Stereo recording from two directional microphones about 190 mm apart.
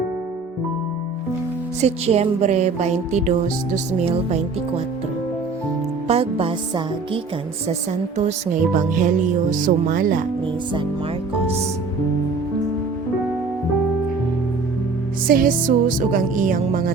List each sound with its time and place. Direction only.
1.8 s music: 35° right (ahead or behind)
6.1 s music: 30° right (ahead or behind)
15.3 s music: 45° right (ahead or behind)